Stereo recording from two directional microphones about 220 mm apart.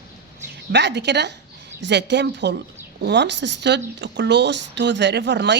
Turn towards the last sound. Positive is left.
turn(degrees=-50)  # may be behind; listen again after turning